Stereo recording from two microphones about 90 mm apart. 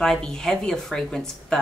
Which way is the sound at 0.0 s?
5° left (ahead or behind).